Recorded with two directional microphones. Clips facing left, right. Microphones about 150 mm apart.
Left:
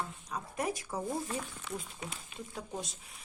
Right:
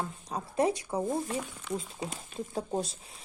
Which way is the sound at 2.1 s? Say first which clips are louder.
Right 6 dB; 35° right (ahead or behind).